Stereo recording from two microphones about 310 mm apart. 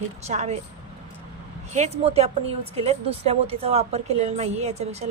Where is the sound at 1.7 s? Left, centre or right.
Right.